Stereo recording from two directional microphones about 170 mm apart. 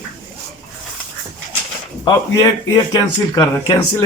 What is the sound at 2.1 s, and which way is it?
Speech, 20° left (ahead or behind).